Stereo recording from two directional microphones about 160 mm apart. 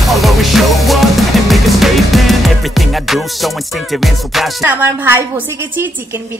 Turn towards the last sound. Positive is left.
turn(degrees=-15)  # may be behind; listen again after turning